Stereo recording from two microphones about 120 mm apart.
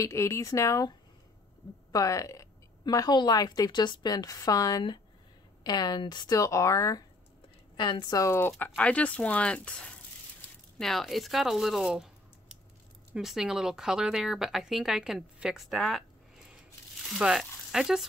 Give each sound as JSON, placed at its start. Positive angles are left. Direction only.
{"t": 0.0, "sound": "a woman's voice", "side_deg": 25}
{"t": 7.7, "sound": "speech", "side_deg": 40}
{"t": 13.1, "sound": "speech", "side_deg": -5}
{"t": 17.1, "sound": "speech", "side_deg": 0}